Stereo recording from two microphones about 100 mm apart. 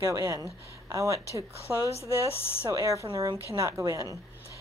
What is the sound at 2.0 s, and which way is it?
Speech, 70° left (ahead or behind).